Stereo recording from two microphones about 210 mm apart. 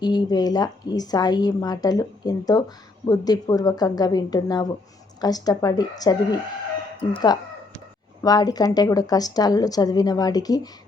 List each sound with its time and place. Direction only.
0.0 s a woman's voice: 20° left (ahead or behind)